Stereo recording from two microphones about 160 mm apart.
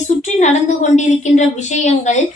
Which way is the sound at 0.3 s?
45° left (ahead or behind).